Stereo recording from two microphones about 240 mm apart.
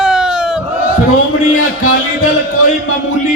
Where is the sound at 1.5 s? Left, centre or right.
Left.